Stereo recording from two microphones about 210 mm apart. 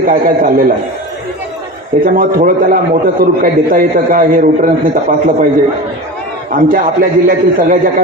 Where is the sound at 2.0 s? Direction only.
40° right (ahead or behind).